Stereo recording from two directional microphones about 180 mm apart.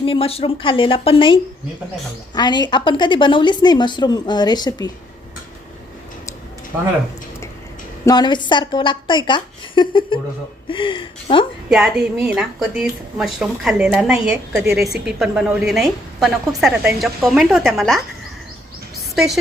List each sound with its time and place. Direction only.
0.0 s a woman's voice: 30° left (ahead or behind)
8.0 s a woman's voice: 25° left (ahead or behind)
11.7 s a woman's voice: centre (ahead or behind)
19.1 s a woman's voice: centre (ahead or behind)